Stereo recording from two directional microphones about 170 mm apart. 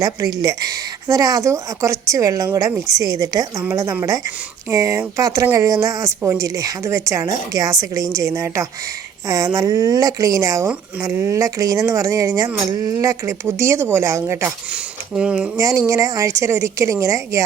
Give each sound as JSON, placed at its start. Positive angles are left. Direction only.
{"t": 0.0, "sound": "speech", "side_deg": -20}
{"t": 15.5, "sound": "a woman's voice", "side_deg": -20}